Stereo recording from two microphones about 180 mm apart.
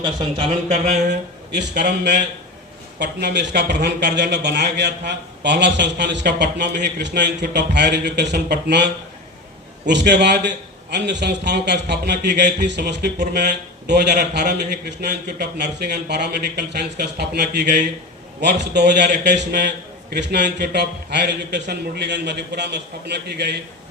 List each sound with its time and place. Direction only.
0.3 s speech: 40° right (ahead or behind)
1.8 s a man's voice: 70° right (ahead or behind)